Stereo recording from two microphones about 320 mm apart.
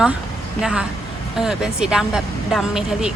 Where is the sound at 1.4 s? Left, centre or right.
Centre.